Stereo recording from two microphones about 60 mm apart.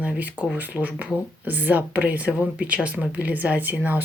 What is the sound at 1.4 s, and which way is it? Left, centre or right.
Speech, right.